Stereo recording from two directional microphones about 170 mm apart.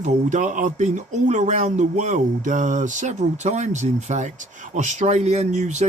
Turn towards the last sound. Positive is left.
turn(degrees=-40)  # may be behind; listen again after turning